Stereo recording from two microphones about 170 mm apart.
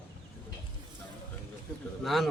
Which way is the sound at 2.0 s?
Centre (ahead or behind).